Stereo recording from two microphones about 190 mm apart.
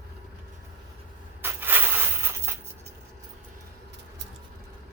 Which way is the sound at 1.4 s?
10° right (ahead or behind).